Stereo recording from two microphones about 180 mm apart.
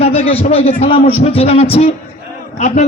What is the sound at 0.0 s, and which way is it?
A man's voice, 35° left (ahead or behind).